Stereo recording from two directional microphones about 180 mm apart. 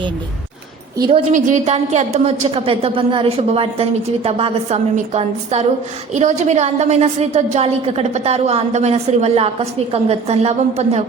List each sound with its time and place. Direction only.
0.9 s a woman's voice: 25° right (ahead or behind)
1.3 s a woman's voice: 45° right (ahead or behind)